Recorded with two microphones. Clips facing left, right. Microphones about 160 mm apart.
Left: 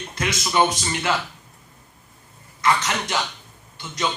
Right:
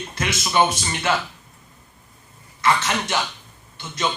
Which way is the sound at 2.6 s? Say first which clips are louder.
Right 1 dB; 20° right (ahead or behind).